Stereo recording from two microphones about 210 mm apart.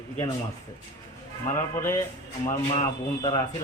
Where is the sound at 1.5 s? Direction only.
10° left (ahead or behind).